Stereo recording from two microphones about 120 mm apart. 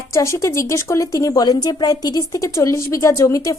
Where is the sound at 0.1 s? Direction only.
25° left (ahead or behind).